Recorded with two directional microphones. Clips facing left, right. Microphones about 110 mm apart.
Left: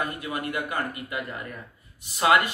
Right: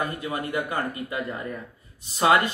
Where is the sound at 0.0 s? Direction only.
25° right (ahead or behind).